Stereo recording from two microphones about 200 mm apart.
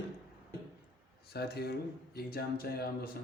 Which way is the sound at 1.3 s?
55° left (ahead or behind).